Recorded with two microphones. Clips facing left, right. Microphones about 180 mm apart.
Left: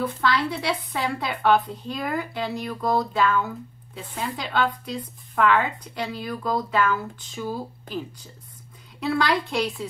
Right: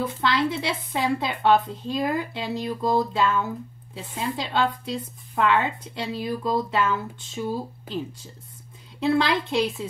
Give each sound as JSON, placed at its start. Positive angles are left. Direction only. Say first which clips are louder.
{"t": 0.2, "sound": "speech", "louder": "right 2 dB", "side_deg": -25}
{"t": 9.0, "sound": "speech", "louder": "right 2 dB", "side_deg": -25}